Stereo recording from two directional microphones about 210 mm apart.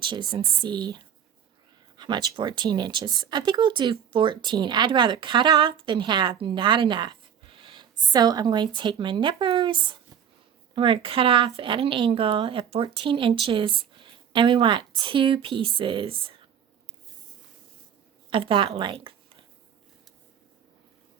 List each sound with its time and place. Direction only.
0.0 s a woman's voice: 20° right (ahead or behind)
18.3 s a woman's voice: 25° right (ahead or behind)